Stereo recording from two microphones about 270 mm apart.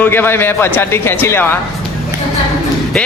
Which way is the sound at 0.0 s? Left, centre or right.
Centre.